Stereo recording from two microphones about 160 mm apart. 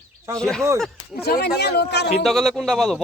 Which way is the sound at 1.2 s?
90° left.